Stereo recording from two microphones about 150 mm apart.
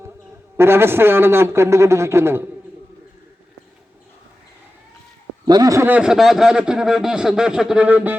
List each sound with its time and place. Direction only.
0.5 s a man's voice: 15° right (ahead or behind)
5.5 s speech: 25° right (ahead or behind)
5.9 s speech: 5° right (ahead or behind)